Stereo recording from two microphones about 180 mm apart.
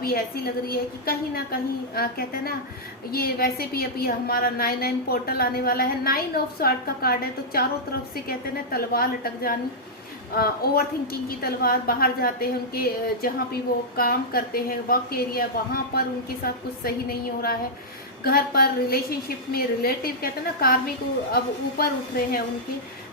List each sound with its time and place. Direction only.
0.0 s a woman's voice: 55° left (ahead or behind)